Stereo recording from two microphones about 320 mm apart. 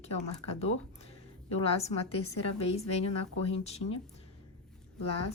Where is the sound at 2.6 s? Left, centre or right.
Centre.